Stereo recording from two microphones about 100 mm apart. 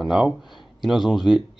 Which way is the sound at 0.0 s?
5° right (ahead or behind).